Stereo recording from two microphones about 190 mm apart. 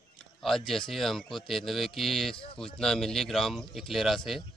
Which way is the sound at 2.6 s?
5° left (ahead or behind).